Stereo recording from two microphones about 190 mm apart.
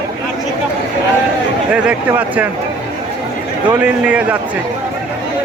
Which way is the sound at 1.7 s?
5° right (ahead or behind).